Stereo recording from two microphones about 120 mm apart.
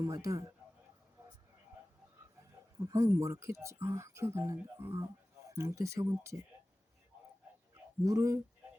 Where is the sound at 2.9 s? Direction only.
25° right (ahead or behind).